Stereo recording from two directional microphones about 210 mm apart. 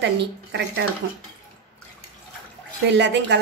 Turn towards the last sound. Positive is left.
turn(degrees=-55)  # may be behind; listen again after turning